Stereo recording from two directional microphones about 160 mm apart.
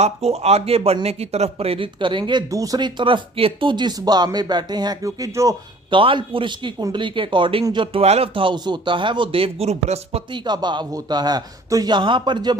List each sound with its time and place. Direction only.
0.0 s speech: 40° right (ahead or behind); by 5.5 s 20° right (ahead or behind)
5.9 s speech: 30° right (ahead or behind)
10.4 s a man's voice: 25° right (ahead or behind)